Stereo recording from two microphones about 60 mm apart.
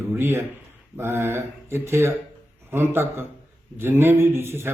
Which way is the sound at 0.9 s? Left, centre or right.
Right.